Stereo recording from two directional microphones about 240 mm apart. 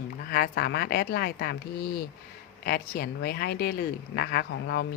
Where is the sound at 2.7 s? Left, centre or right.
Left.